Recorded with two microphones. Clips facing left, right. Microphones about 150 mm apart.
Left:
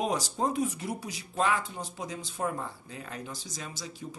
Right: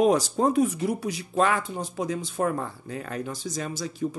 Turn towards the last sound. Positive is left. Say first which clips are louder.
# right 11 dB
turn(degrees=-55)  # may be behind; listen again after turning